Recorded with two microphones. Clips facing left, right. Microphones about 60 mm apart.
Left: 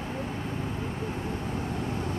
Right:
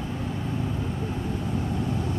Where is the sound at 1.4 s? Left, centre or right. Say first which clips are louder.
Right 3 dB; left.